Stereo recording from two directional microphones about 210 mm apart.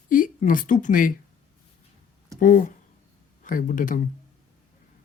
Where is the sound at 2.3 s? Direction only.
40° left (ahead or behind).